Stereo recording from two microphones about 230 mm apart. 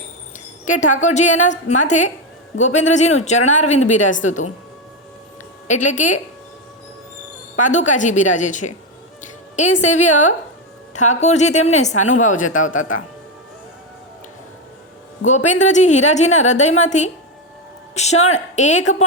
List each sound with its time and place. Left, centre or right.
0.6 s speech: left
5.6 s speech: left
7.6 s speech: left
9.2 s music: left
9.8 s a woman's voice: left
12.2 s speech: left
15.5 s a woman's voice: left